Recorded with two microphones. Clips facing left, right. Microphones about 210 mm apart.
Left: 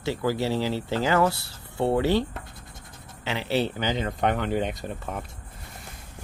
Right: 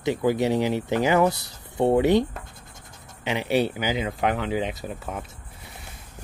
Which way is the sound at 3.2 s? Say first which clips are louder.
Right 3 dB; 15° right (ahead or behind).